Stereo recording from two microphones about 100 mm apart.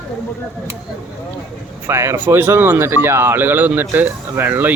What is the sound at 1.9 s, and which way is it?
Speech, 25° right (ahead or behind).